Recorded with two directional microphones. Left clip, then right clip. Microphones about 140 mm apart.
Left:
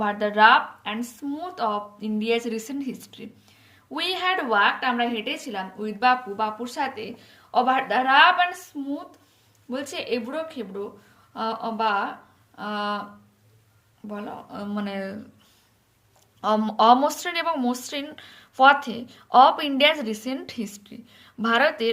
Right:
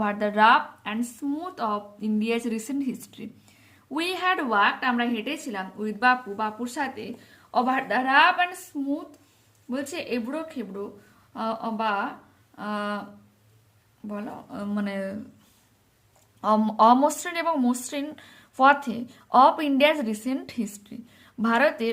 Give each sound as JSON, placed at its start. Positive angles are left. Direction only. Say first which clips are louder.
{"t": 0.0, "sound": "a woman's voice", "louder": "left 3 dB", "side_deg": -40}
{"t": 14.1, "sound": "speech", "louder": "left 1 dB", "side_deg": -25}
{"t": 16.4, "sound": "speech", "louder": "right 1 dB", "side_deg": -30}